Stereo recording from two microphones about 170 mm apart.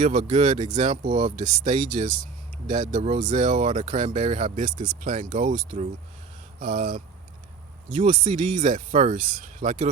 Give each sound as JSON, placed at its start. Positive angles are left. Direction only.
{"t": 0.0, "sound": "speech", "side_deg": -45}
{"t": 2.9, "sound": "speech", "side_deg": -45}